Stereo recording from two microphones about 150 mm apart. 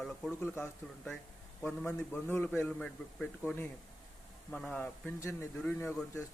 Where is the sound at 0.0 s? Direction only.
Centre (ahead or behind).